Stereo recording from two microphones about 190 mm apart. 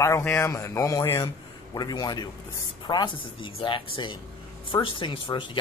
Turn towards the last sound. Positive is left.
turn(degrees=25)  # may be behind; listen again after turning